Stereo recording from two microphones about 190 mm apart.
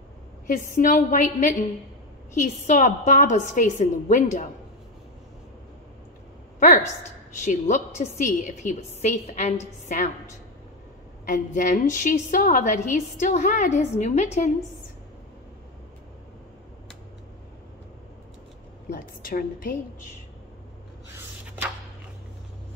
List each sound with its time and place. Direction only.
0.5 s a woman's voice: 45° left (ahead or behind)
6.6 s a woman's voice: 40° left (ahead or behind)
11.2 s a woman's voice: 45° left (ahead or behind)
18.9 s a woman's voice: 50° left (ahead or behind)